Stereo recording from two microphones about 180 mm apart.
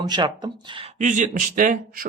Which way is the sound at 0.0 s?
25° right (ahead or behind).